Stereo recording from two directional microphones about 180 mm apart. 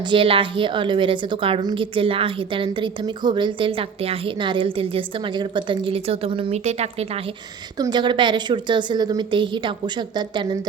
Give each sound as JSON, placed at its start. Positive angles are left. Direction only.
{"t": 0.0, "sound": "a woman's voice", "side_deg": -30}
{"t": 7.8, "sound": "a woman's voice", "side_deg": -25}